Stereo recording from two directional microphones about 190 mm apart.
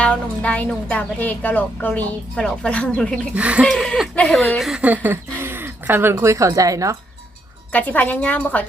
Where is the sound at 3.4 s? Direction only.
5° right (ahead or behind).